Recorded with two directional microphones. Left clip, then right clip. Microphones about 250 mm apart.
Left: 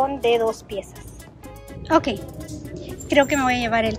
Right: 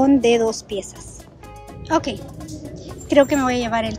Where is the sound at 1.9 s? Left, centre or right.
Centre.